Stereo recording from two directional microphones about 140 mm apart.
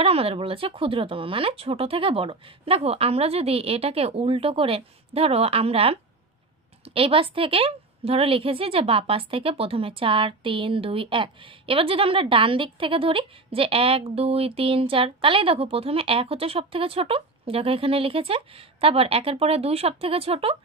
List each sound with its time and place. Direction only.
0.0 s a woman's voice: 45° right (ahead or behind)